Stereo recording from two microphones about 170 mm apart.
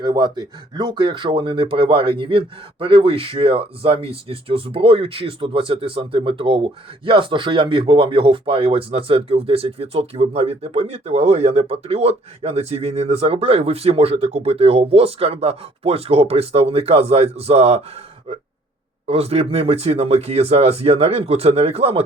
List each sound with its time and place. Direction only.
0.0 s speech: 25° right (ahead or behind)
19.0 s speech: 35° right (ahead or behind)